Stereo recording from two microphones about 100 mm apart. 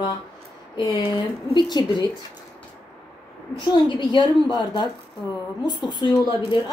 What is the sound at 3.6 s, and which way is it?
A woman's voice, 50° left (ahead or behind).